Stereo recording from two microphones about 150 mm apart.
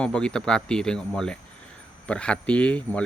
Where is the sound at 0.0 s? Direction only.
5° left (ahead or behind).